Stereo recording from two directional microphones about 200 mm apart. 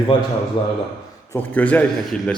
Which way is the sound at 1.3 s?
10° left (ahead or behind).